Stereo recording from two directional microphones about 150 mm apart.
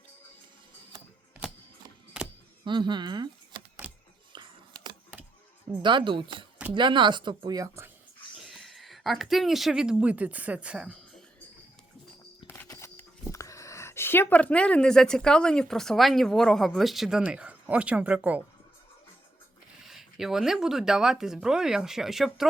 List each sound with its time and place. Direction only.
2.6 s speech: 30° right (ahead or behind)
4.3 s a sound: 30° right (ahead or behind)
5.8 s speech: 30° right (ahead or behind)
8.4 s speech: centre (ahead or behind)
12.6 s a sound: 20° left (ahead or behind)
13.3 s speech: 20° left (ahead or behind); by 18.4 s 10° right (ahead or behind)
19.9 s speech: centre (ahead or behind)